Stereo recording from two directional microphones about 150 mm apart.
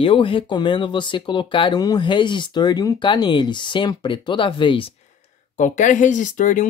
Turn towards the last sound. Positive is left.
turn(degrees=60)  # may be behind; listen again after turning